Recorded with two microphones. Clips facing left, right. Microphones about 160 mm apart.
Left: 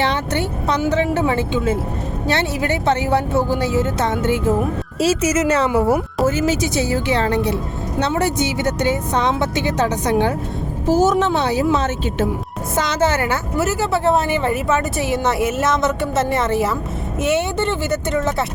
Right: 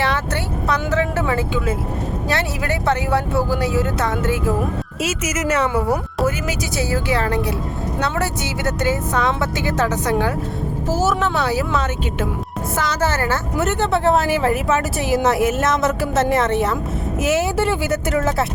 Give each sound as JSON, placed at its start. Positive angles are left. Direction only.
{"t": 0.0, "sound": "a woman's voice", "side_deg": 20}
{"t": 13.6, "sound": "speech", "side_deg": 5}